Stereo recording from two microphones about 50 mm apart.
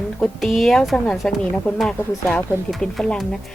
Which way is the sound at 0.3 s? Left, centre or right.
Centre.